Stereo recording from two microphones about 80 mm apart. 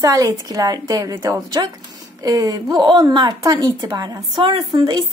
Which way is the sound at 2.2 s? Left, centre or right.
Right.